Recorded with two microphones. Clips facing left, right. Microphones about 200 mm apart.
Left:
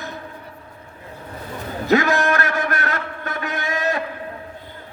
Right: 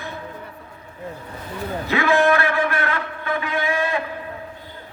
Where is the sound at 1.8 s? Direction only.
40° left (ahead or behind).